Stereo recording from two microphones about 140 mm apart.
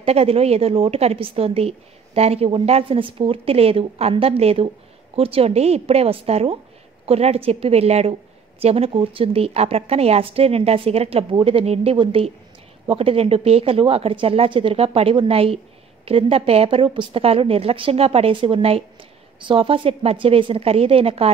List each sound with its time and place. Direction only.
0.0 s a woman's voice: 45° right (ahead or behind)